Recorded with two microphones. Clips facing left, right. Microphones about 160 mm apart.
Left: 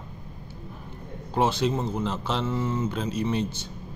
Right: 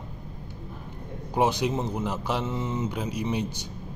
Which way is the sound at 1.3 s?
15° right (ahead or behind).